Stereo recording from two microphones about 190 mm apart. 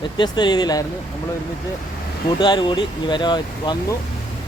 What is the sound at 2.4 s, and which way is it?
Speech, 25° left (ahead or behind).